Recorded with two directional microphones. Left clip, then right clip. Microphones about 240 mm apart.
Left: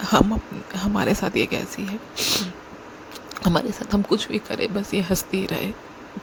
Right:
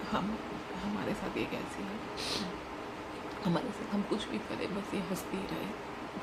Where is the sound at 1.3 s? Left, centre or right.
Left.